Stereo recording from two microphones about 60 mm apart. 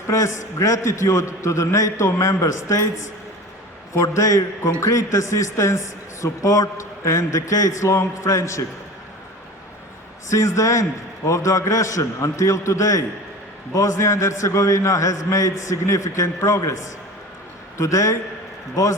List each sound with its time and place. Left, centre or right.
0.1 s a man's voice: left
4.0 s a man's voice: left
10.3 s a man's voice: left